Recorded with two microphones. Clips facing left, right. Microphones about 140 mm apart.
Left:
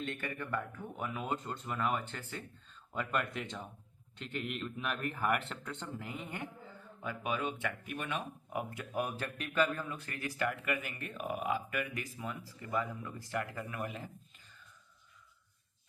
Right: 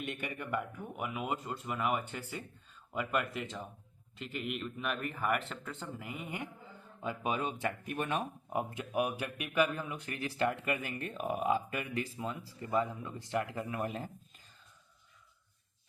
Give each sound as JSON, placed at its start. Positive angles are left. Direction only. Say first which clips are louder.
{"t": 0.0, "sound": "speech", "louder": "even", "side_deg": -15}
{"t": 8.7, "sound": "speech", "louder": "right 4 dB", "side_deg": -15}